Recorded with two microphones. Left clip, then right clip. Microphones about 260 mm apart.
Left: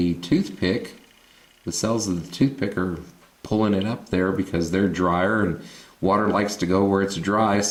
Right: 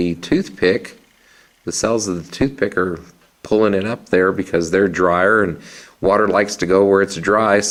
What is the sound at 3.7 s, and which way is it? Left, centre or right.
Speech, left.